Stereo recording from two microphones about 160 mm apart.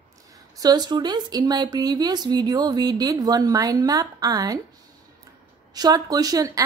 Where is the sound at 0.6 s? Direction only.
25° right (ahead or behind).